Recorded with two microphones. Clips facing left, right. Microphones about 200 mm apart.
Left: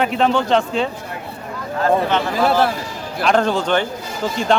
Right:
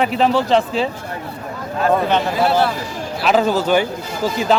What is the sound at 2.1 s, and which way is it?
Speech, 15° right (ahead or behind).